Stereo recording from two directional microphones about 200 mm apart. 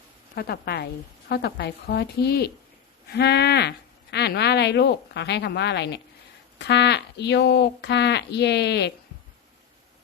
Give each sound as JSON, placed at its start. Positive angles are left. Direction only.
{"t": 0.3, "sound": "a woman's voice", "side_deg": 50}